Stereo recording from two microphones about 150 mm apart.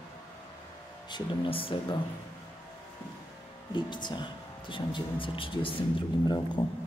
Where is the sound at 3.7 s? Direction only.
30° left (ahead or behind).